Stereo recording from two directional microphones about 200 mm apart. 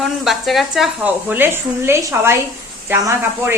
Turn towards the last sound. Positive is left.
turn(degrees=-15)  # may be behind; listen again after turning